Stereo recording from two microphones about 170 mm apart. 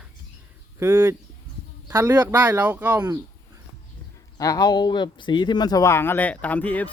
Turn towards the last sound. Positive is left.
turn(degrees=10)  # may be behind; listen again after turning